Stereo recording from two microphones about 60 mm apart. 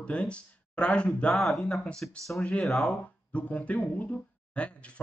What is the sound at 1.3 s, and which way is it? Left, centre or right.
Speech, centre.